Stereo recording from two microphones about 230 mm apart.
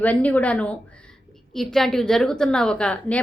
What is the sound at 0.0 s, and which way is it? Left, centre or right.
A woman's voice, centre.